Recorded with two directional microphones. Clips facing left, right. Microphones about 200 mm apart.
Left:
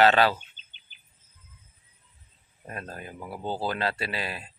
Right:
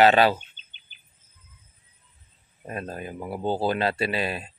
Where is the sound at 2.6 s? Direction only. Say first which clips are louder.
Right 5 dB; 20° right (ahead or behind).